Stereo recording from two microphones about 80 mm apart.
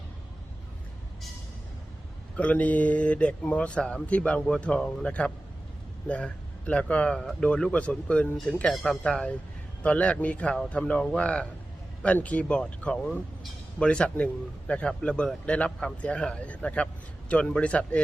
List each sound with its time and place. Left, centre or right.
2.3 s a man's voice: centre
8.7 s a man's voice: centre